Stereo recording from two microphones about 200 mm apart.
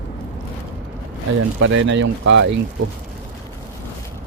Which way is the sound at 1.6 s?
70° right (ahead or behind).